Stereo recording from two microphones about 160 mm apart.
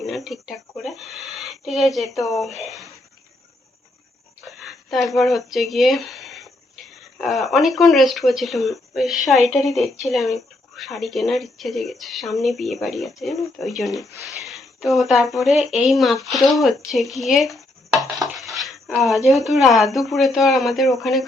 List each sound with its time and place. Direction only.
0.3 s speech: centre (ahead or behind)
4.6 s speech: centre (ahead or behind)
18.3 s a sound: centre (ahead or behind)
19.6 s speech: centre (ahead or behind)